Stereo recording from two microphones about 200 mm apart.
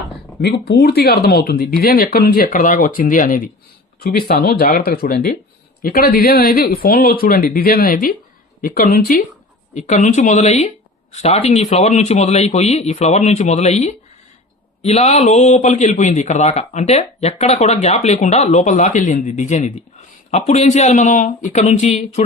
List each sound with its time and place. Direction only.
0.4 s a man's voice: 55° left (ahead or behind); by 22.2 s 35° left (ahead or behind)